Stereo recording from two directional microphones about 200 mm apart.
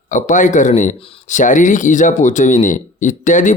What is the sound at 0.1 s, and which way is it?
Speech, 40° left (ahead or behind).